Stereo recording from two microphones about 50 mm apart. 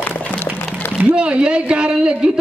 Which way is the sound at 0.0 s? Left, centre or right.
Left.